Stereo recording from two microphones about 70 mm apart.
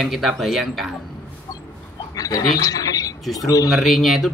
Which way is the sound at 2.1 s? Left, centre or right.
Left.